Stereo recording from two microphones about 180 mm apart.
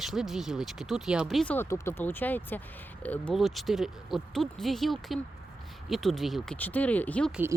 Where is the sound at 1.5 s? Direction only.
15° left (ahead or behind).